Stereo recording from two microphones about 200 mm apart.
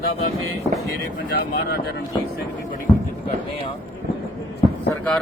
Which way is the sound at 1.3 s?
50° left (ahead or behind).